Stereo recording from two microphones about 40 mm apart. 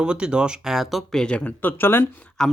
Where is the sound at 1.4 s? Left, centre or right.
Left.